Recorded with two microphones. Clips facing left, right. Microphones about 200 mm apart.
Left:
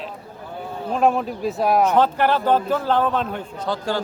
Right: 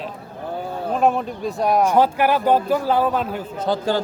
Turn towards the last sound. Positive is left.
turn(degrees=-20)  # may be behind; listen again after turning